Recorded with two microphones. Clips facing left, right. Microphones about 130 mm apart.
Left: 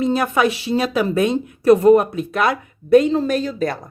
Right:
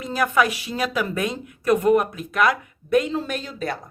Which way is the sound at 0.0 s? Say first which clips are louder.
Left 4 dB; 25° left (ahead or behind).